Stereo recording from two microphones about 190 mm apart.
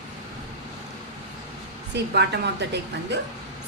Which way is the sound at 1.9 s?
60° right (ahead or behind).